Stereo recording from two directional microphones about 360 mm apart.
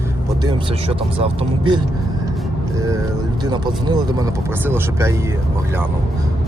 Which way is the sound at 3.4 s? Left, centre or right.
Centre.